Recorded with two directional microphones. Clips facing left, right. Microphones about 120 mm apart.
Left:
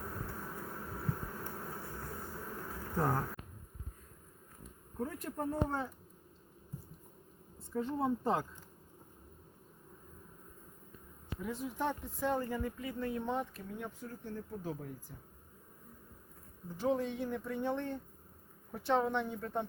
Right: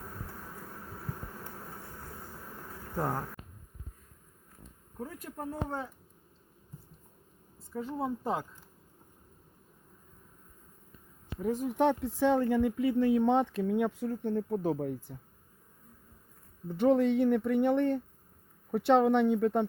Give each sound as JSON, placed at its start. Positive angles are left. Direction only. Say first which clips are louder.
{"t": 2.9, "sound": "speech", "louder": "even", "side_deg": -10}
{"t": 4.9, "sound": "speech", "louder": "left 2 dB", "side_deg": -5}
{"t": 7.7, "sound": "speech", "louder": "even", "side_deg": -5}
{"t": 11.4, "sound": "speech", "louder": "right 9 dB", "side_deg": -45}
{"t": 11.7, "sound": "speech", "louder": "right 12 dB", "side_deg": -70}
{"t": 16.7, "sound": "speech", "louder": "right 9 dB", "side_deg": -70}